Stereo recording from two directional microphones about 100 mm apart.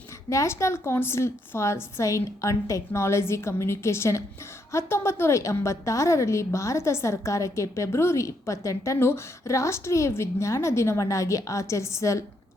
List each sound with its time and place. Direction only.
0.3 s a woman's voice: 30° left (ahead or behind)